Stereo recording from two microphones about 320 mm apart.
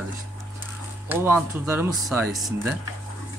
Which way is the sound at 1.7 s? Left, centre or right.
Centre.